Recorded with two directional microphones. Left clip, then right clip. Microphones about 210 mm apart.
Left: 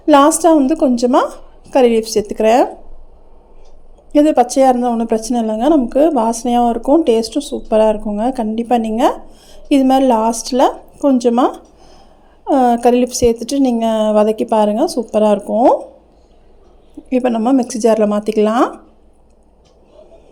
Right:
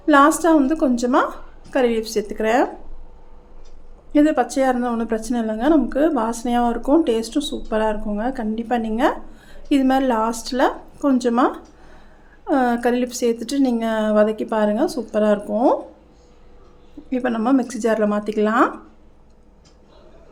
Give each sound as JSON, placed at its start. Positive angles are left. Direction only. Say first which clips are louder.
{"t": 0.0, "sound": "a woman's voice", "louder": "left 5 dB", "side_deg": 25}
{"t": 4.1, "sound": "a woman's voice", "louder": "left 6 dB", "side_deg": 20}
{"t": 17.1, "sound": "a woman's voice", "louder": "left 6 dB", "side_deg": 20}